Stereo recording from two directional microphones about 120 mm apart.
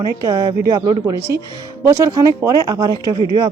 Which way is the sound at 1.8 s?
25° right (ahead or behind).